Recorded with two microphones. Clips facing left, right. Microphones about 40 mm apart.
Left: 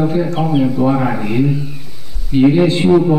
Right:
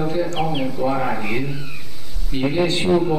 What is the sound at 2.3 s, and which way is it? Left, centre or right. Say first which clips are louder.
Speech: left 9 dB; centre.